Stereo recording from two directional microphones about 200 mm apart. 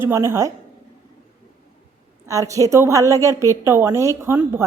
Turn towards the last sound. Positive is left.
turn(degrees=-10)  # may be behind; listen again after turning